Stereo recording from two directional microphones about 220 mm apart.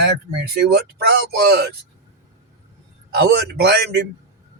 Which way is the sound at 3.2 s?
45° right (ahead or behind).